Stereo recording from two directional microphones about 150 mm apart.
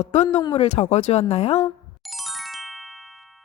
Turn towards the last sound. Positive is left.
turn(degrees=0)  # may be behind; listen again after turning